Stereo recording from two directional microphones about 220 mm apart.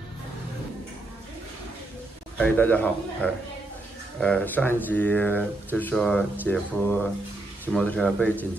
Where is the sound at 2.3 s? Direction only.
5° left (ahead or behind).